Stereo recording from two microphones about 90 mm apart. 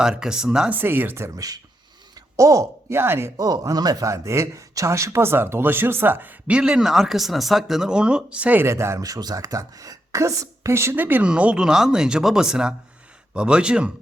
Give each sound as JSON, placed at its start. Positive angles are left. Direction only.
{"t": 0.0, "sound": "speech", "side_deg": -5}
{"t": 0.7, "sound": "speech", "side_deg": -25}
{"t": 2.3, "sound": "speech", "side_deg": -35}
{"t": 3.3, "sound": "speech", "side_deg": -40}
{"t": 6.5, "sound": "speech", "side_deg": -10}
{"t": 8.6, "sound": "speech", "side_deg": -30}